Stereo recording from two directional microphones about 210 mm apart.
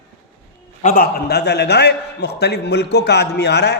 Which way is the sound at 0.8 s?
40° left (ahead or behind).